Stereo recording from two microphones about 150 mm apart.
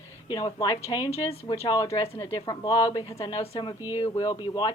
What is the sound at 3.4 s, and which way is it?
Speech, 35° left (ahead or behind).